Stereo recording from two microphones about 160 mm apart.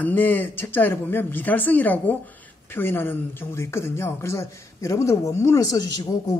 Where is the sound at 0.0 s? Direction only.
10° left (ahead or behind).